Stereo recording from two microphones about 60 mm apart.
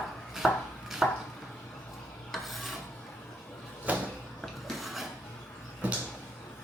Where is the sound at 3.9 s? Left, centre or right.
Right.